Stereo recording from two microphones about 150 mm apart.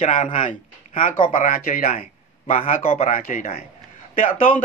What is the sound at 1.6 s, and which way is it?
Speech, 75° left (ahead or behind).